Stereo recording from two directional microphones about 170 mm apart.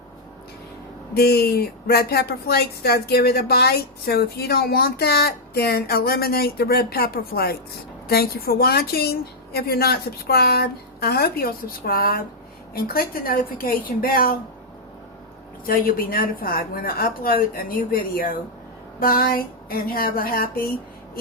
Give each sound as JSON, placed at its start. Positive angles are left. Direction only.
{"t": 1.1, "sound": "speech", "side_deg": 65}
{"t": 15.6, "sound": "speech", "side_deg": 60}